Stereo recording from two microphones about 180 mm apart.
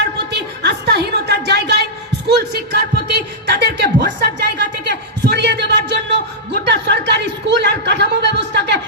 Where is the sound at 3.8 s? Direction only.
70° right (ahead or behind).